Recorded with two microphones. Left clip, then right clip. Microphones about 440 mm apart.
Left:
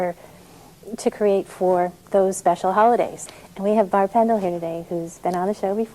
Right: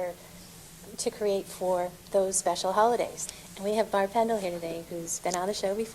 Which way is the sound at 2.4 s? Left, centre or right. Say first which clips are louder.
Left 8 dB; left.